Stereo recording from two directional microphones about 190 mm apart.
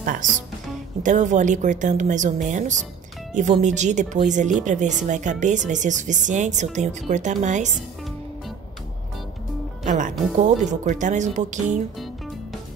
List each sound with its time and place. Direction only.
0.0 s speech: 45° right (ahead or behind)
9.8 s speech: 40° right (ahead or behind)